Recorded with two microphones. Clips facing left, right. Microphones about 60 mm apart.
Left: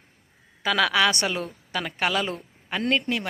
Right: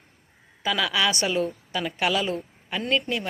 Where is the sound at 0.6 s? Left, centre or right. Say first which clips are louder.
Left 3 dB; left.